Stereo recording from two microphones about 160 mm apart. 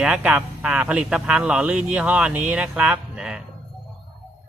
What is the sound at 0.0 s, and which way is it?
Speech, 5° right (ahead or behind).